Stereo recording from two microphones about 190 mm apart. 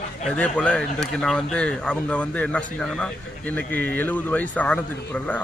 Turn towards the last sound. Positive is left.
turn(degrees=10)  # may be behind; listen again after turning